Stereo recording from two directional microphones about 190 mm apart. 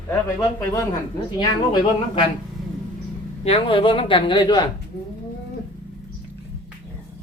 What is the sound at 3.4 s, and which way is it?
Speech, 30° left (ahead or behind).